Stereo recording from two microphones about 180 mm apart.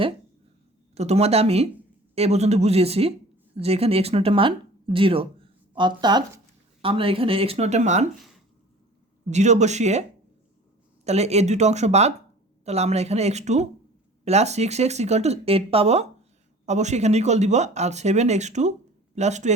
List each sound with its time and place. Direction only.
0.9 s speech: 35° right (ahead or behind)
9.3 s speech: 40° right (ahead or behind)
11.0 s speech: 35° right (ahead or behind)